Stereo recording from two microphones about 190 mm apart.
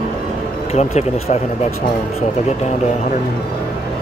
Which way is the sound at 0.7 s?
35° left (ahead or behind).